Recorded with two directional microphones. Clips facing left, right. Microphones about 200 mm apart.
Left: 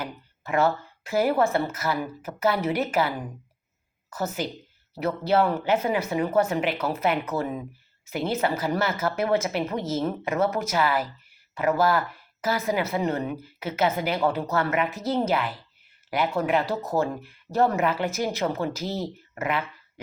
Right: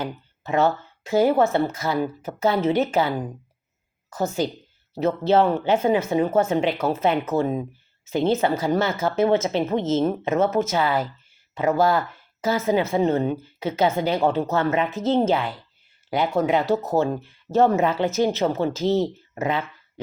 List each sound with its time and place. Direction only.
0.0 s speech: 25° right (ahead or behind)
4.2 s speech: 25° right (ahead or behind)